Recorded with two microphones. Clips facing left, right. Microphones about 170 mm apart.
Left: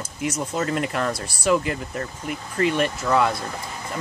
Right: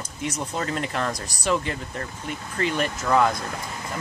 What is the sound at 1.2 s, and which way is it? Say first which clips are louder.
Speech: left 2 dB; 40° right (ahead or behind).